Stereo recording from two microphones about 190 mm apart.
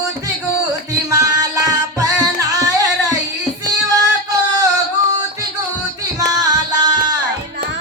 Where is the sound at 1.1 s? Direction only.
15° right (ahead or behind).